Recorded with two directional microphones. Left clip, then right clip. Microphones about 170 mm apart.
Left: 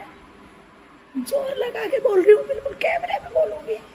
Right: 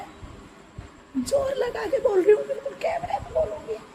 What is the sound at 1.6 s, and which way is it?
Speech, 5° left (ahead or behind).